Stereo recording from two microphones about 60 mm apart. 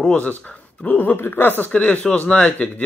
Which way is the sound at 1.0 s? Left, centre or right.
Left.